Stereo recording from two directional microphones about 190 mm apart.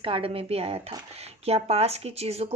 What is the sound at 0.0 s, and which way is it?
A woman's voice, 30° right (ahead or behind).